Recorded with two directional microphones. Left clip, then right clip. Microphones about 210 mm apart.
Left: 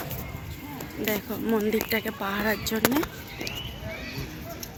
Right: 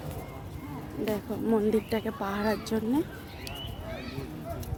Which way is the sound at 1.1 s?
Centre (ahead or behind).